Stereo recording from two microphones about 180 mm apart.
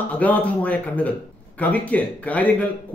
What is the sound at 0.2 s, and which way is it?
A man's voice, 10° left (ahead or behind).